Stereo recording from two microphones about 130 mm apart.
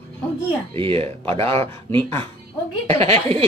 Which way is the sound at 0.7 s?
45° right (ahead or behind).